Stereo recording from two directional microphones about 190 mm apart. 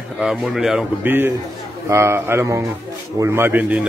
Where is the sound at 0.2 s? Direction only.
Centre (ahead or behind).